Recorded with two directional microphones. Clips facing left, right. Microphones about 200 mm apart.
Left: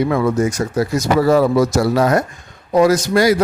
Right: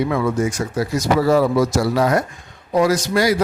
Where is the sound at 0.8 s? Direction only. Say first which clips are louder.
Left 2 dB; 50° left (ahead or behind).